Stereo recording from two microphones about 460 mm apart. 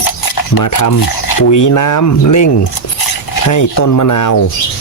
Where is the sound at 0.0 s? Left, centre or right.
Left.